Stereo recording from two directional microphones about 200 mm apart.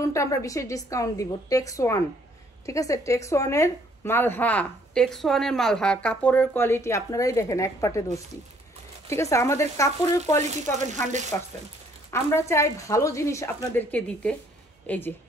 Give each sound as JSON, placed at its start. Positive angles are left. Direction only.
{"t": 0.0, "sound": "speech", "side_deg": 15}
{"t": 10.9, "sound": "speech", "side_deg": -35}
{"t": 12.1, "sound": "speech", "side_deg": 15}